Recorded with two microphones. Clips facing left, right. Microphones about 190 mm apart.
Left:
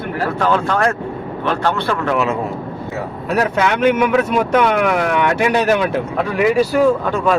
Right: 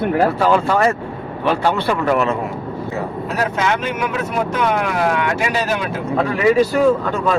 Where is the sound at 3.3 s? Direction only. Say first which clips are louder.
Left 4 dB; 60° left (ahead or behind).